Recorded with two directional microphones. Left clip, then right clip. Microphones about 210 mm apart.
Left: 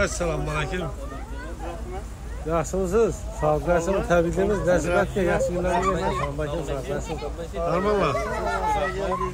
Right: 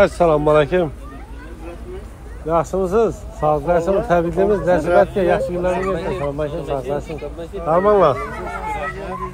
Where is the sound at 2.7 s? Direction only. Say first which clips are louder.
Right 5 dB; 25° right (ahead or behind).